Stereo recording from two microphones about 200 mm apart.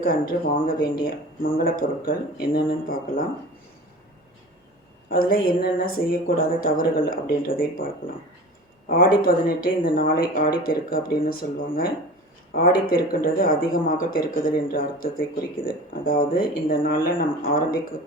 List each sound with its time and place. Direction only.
0.0 s speech: 45° left (ahead or behind)
5.0 s speech: 45° left (ahead or behind)